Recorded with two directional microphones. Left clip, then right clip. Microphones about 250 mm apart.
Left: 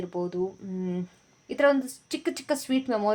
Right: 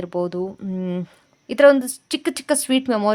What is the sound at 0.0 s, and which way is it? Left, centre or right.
A woman's voice, right.